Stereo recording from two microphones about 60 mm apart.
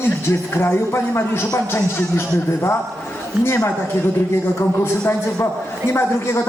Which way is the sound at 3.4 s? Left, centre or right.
Left.